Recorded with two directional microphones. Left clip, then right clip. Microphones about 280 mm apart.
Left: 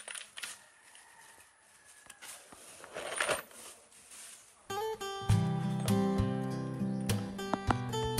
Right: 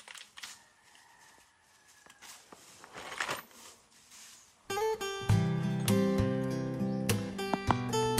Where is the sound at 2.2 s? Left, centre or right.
Right.